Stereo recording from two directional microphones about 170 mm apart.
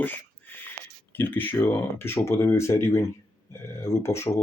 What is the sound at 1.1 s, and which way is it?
Speech, 10° left (ahead or behind).